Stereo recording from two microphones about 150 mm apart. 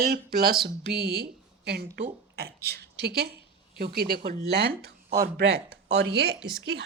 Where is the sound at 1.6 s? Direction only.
90° right.